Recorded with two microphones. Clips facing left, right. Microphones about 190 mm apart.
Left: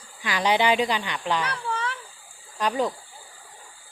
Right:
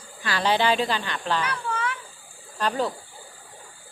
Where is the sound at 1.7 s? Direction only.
35° left (ahead or behind).